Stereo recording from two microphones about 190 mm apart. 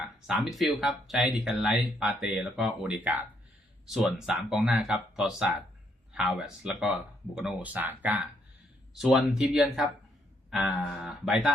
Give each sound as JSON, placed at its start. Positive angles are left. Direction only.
{"t": 0.3, "sound": "speech", "side_deg": 0}